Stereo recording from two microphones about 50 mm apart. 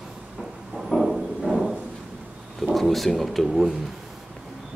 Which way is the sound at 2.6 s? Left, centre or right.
Centre.